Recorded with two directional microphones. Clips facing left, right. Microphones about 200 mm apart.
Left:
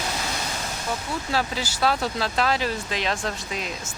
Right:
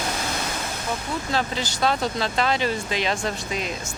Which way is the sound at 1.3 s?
5° left (ahead or behind).